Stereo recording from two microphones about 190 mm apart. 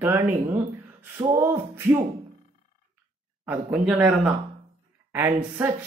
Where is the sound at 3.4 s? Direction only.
5° right (ahead or behind).